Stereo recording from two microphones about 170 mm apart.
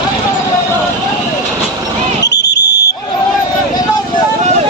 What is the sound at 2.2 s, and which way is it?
Fire alarm, 85° left.